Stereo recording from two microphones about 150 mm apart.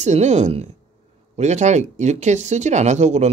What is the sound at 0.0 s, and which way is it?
Speech, 50° right (ahead or behind).